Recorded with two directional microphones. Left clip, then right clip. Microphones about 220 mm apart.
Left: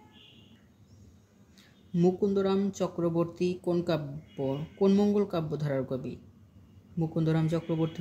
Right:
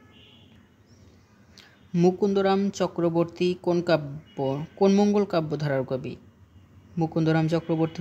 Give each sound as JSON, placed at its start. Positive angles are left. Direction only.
{"t": 1.6, "sound": "speech", "side_deg": -35}